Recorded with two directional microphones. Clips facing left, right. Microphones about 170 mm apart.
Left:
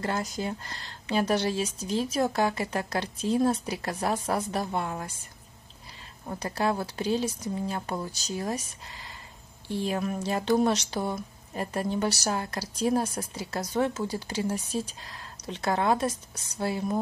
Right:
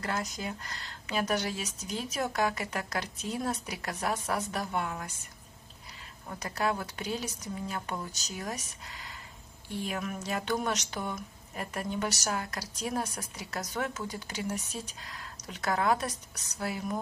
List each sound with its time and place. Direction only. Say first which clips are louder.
0.0 s speech: left 4 dB; 30° left (ahead or behind)
6.2 s speech: left 4 dB; 30° left (ahead or behind)